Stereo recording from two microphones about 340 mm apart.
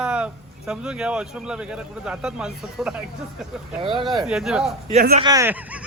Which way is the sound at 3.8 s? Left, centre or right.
Centre.